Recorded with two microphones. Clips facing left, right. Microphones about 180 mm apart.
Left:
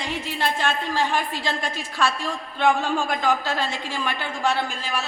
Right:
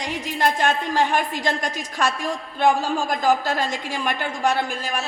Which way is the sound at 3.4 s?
45° right (ahead or behind).